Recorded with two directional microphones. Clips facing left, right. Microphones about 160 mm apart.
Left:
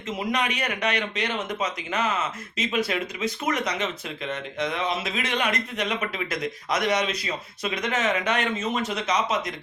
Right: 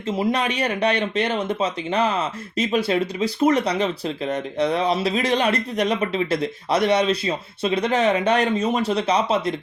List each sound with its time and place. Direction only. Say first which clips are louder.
0.2 s speech: right 5 dB; 30° right (ahead or behind)